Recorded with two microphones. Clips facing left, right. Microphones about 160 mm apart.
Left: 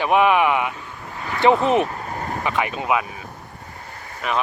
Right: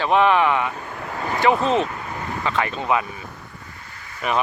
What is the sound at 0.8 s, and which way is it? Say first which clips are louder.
Vehicle: right 5 dB; 60° right (ahead or behind).